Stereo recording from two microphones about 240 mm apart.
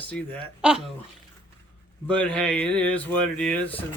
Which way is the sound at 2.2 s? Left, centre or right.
Centre.